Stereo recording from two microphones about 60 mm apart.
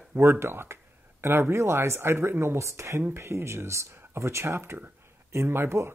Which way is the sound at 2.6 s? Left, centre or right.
Right.